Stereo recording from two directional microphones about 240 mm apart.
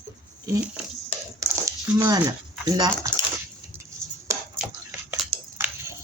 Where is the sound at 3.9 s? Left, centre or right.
Centre.